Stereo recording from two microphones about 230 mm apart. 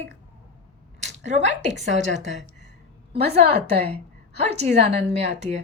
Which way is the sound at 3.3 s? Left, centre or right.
Right.